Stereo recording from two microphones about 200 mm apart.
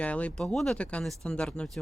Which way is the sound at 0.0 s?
5° left (ahead or behind).